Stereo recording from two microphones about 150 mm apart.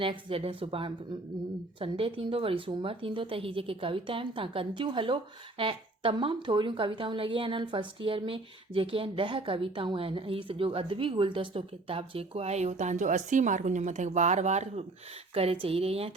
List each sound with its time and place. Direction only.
0.0 s a woman's voice: 35° right (ahead or behind)